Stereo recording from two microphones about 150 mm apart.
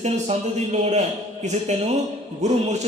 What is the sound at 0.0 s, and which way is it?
A man's voice, 45° right (ahead or behind).